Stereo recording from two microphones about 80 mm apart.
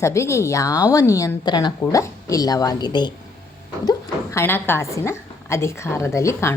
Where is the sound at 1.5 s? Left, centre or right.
Left.